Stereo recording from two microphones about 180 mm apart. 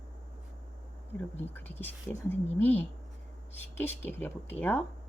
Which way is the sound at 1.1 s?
10° left (ahead or behind).